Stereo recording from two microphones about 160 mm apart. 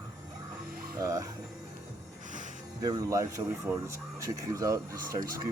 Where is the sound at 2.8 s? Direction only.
20° right (ahead or behind).